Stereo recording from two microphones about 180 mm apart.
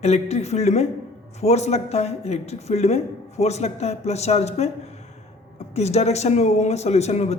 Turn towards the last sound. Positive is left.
turn(degrees=35)  # may be behind; listen again after turning